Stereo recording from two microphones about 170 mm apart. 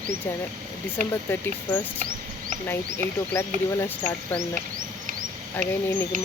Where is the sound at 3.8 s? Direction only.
10° left (ahead or behind).